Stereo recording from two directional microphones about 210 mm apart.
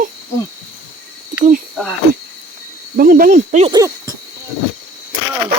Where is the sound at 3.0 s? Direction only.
40° right (ahead or behind).